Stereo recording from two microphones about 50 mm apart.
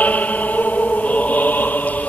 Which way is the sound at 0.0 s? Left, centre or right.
Left.